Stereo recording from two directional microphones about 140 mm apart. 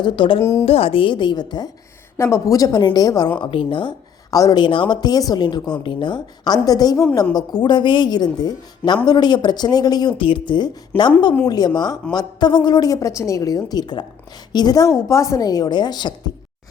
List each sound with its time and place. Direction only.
0.0 s a woman's voice: 40° left (ahead or behind)
3.4 s a woman's voice: 40° left (ahead or behind); by 7.3 s 15° left (ahead or behind)
7.3 s a woman's voice: 30° left (ahead or behind)